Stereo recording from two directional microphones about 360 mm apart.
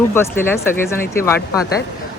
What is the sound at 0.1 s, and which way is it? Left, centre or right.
Speech, centre.